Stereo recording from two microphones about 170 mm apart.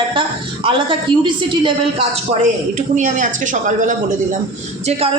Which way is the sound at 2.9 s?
45° right (ahead or behind).